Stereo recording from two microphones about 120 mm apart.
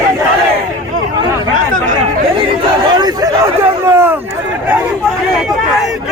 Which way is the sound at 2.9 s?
35° right (ahead or behind).